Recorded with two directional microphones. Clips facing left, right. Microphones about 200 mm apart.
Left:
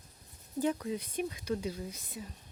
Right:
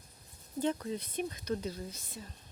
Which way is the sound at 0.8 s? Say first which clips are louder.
Left 1 dB; 10° left (ahead or behind).